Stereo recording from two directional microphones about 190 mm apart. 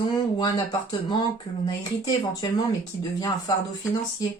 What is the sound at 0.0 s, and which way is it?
Speech, 20° left (ahead or behind).